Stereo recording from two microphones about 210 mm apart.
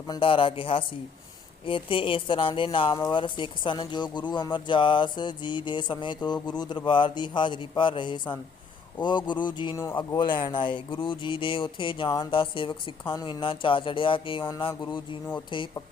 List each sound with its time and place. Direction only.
0.1 s speech: 25° left (ahead or behind)